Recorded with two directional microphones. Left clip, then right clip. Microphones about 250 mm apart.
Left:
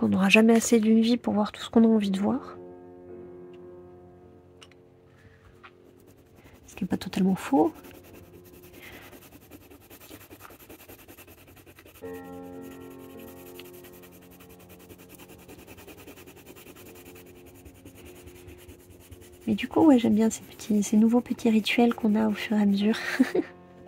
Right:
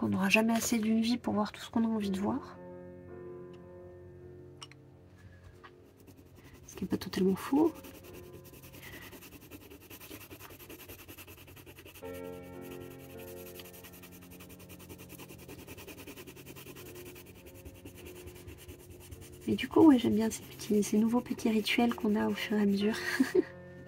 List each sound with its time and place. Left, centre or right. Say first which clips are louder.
0.0 s speech: left 8 dB; left
6.9 s speech: left 2 dB; left
10.0 s rub: left 3 dB; centre
13.2 s music: left 2 dB; centre
14.9 s a sound: even; centre
19.5 s speech: left 3 dB; left